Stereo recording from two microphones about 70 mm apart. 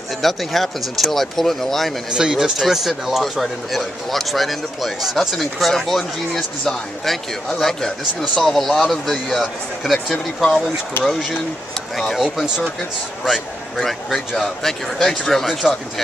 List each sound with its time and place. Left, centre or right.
0.2 s speech: centre
2.0 s speech: centre
12.0 s speech: centre